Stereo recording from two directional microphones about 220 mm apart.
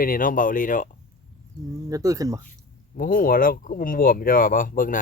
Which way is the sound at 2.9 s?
40° left (ahead or behind).